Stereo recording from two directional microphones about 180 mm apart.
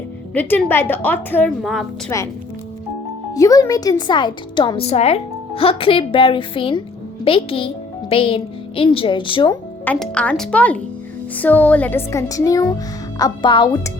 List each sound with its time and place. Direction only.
0.3 s music: 10° left (ahead or behind)
1.6 s a woman's voice: centre (ahead or behind)
2.1 s music: 15° left (ahead or behind)
3.3 s a woman's voice: 20° left (ahead or behind)
9.8 s music: 5° left (ahead or behind)
13.1 s a woman's voice: 25° left (ahead or behind)